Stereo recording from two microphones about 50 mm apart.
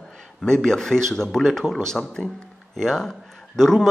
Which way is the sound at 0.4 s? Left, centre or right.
Centre.